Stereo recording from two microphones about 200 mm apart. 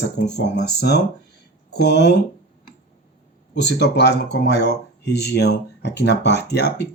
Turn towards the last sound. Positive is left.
turn(degrees=55)  # may be behind; listen again after turning